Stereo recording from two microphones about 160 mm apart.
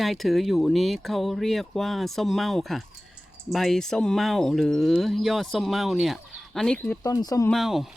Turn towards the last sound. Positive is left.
turn(degrees=0)  # may be behind; listen again after turning